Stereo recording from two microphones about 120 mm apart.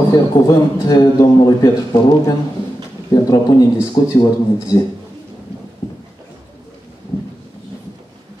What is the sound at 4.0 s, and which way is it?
Speech, 25° left (ahead or behind).